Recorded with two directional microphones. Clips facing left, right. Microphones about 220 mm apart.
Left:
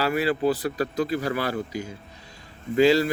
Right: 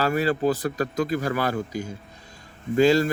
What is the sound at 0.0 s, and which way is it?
A man's voice, 45° right (ahead or behind).